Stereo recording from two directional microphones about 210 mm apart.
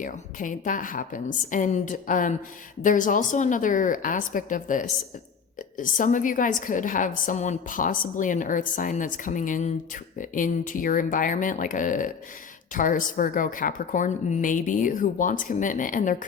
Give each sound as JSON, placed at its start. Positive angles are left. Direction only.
{"t": 0.0, "sound": "a woman's voice", "side_deg": 40}